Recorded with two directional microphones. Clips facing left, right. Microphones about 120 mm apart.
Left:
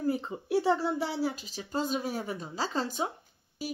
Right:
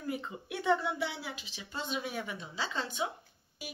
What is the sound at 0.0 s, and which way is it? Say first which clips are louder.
A woman's voice: left 7 dB; 35° left (ahead or behind).